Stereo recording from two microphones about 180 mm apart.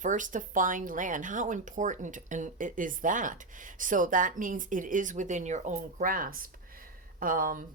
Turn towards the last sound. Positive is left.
turn(degrees=-50)  # may be behind; listen again after turning